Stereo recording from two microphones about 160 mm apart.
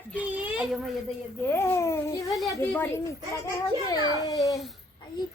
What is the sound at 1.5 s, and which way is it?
Babbling, 15° left (ahead or behind).